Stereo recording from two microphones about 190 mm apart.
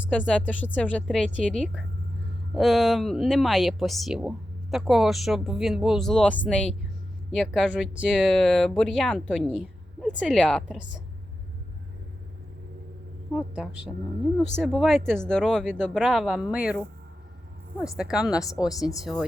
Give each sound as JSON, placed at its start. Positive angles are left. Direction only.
{"t": 0.3, "sound": "speech", "side_deg": 5}
{"t": 13.5, "sound": "speech", "side_deg": -5}
{"t": 17.9, "sound": "speech", "side_deg": -5}